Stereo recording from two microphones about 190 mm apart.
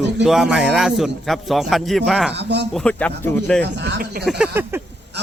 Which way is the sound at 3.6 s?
60° right (ahead or behind).